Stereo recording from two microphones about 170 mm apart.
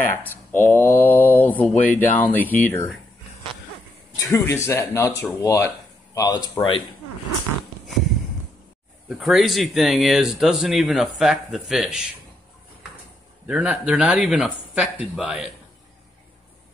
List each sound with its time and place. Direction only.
0.5 s speech: 10° left (ahead or behind)
4.2 s a man's voice: 20° left (ahead or behind)
9.2 s speech: centre (ahead or behind)
13.5 s speech: 5° right (ahead or behind)